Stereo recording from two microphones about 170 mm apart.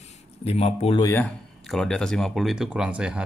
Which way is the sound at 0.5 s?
35° left (ahead or behind).